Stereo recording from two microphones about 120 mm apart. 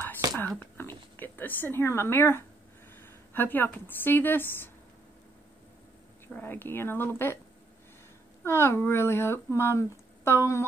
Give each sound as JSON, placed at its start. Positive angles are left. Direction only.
{"t": 0.2, "sound": "whispering", "side_deg": -30}
{"t": 0.7, "sound": "a woman's voice", "side_deg": 20}
{"t": 6.2, "sound": "speech", "side_deg": 15}
{"t": 8.5, "sound": "speech", "side_deg": 20}